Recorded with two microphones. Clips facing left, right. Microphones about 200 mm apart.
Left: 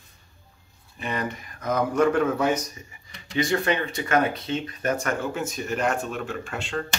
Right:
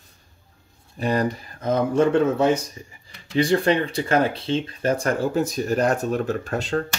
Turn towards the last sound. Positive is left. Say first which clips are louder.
# right 6 dB
turn(degrees=-40)  # may be behind; listen again after turning